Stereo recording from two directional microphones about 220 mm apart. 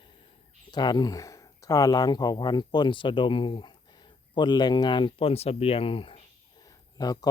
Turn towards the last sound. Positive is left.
turn(degrees=15)  # may be behind; listen again after turning